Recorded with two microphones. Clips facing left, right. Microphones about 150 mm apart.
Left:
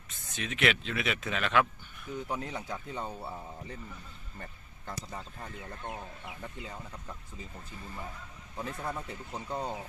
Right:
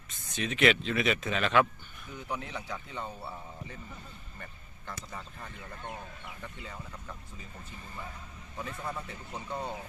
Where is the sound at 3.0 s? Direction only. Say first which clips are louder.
Left 2 dB; 20° left (ahead or behind).